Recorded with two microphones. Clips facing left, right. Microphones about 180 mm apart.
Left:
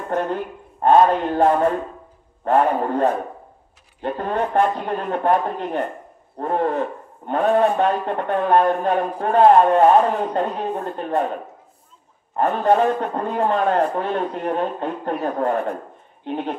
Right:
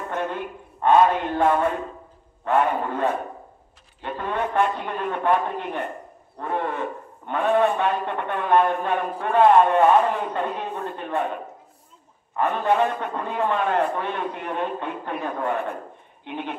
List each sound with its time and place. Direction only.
0.1 s a man's voice: 40° left (ahead or behind)
12.4 s a man's voice: 40° left (ahead or behind)